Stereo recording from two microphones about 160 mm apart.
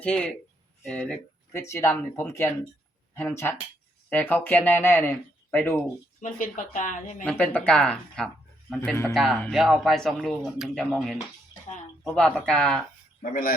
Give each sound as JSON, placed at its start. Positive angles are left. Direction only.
{"t": 0.0, "sound": "speech", "side_deg": 5}
{"t": 1.5, "sound": "speech", "side_deg": 15}
{"t": 6.1, "sound": "a woman's voice", "side_deg": 55}
{"t": 7.3, "sound": "speech", "side_deg": 10}